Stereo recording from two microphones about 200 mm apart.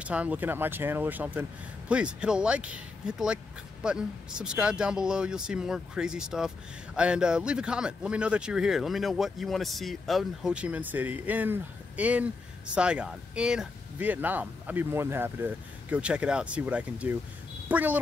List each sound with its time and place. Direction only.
0.0 s speech: 5° right (ahead or behind)